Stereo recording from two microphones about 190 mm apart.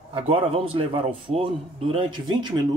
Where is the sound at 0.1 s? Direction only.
30° right (ahead or behind).